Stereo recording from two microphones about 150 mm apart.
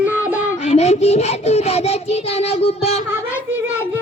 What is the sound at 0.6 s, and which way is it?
Child singing, 45° left (ahead or behind).